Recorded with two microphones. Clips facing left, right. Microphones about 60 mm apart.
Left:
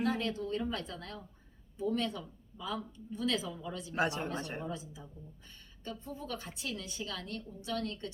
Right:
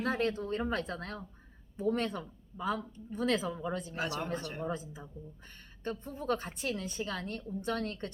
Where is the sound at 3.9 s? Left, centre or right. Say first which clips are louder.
Left 2 dB; left.